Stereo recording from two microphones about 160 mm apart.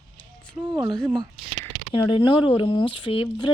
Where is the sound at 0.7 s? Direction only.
30° right (ahead or behind).